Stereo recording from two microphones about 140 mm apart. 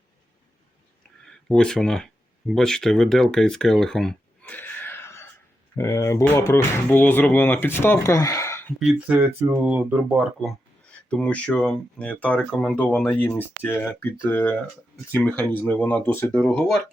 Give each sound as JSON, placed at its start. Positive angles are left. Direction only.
{"t": 1.2, "sound": "speech", "side_deg": 5}
{"t": 8.8, "sound": "speech", "side_deg": 0}
{"t": 9.6, "sound": "speech", "side_deg": -15}
{"t": 11.1, "sound": "speech", "side_deg": 10}